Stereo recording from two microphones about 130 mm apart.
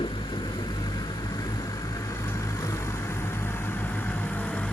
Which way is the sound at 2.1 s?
25° left (ahead or behind).